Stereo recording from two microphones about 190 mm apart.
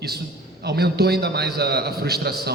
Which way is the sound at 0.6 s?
60° right (ahead or behind).